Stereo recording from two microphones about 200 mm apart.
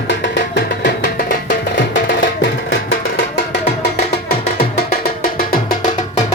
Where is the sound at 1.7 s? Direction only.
65° left (ahead or behind).